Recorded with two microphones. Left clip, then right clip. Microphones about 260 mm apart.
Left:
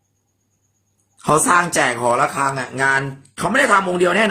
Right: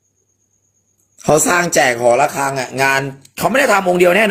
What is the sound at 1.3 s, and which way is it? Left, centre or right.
Speech, centre.